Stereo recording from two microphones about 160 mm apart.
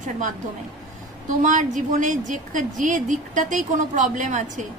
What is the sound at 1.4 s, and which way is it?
A woman's voice, 50° right (ahead or behind).